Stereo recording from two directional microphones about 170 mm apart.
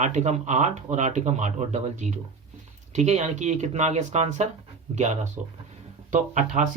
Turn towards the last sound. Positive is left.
turn(degrees=-45)  # may be behind; listen again after turning